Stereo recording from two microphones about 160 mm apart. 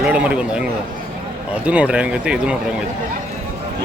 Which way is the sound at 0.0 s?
5° right (ahead or behind).